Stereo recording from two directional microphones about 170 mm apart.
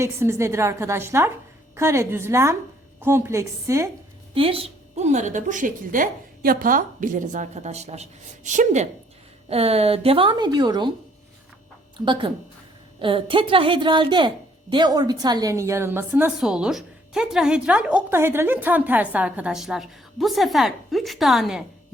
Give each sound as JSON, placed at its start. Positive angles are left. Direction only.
{"t": 0.0, "sound": "a woman's voice", "side_deg": -15}
{"t": 4.4, "sound": "a woman's voice", "side_deg": -35}
{"t": 11.9, "sound": "a woman's voice", "side_deg": -30}